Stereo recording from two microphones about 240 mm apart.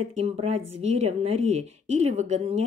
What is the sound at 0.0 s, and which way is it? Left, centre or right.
Speech, right.